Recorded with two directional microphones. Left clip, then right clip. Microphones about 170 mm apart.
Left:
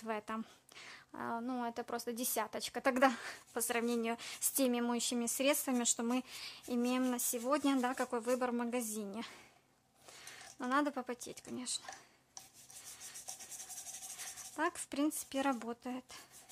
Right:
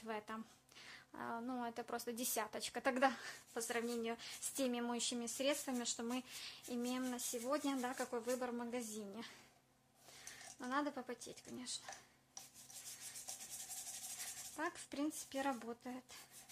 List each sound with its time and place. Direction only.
0.0 s speech: 35° left (ahead or behind)
14.2 s speech: 40° left (ahead or behind)